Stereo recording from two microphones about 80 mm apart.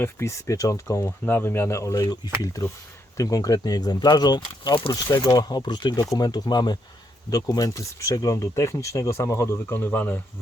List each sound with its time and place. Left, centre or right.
0.0 s speech: left
1.2 s speech: left
5.3 s speech: left
6.1 s speech: left